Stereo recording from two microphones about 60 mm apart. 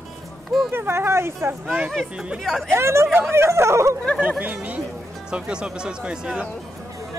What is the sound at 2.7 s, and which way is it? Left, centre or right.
Speech, right.